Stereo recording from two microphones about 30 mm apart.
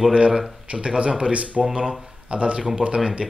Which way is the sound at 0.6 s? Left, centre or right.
Right.